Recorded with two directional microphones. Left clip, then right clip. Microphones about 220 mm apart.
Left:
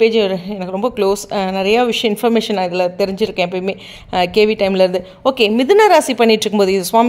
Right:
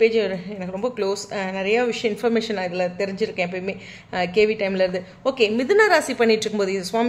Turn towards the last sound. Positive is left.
turn(degrees=35)  # may be behind; listen again after turning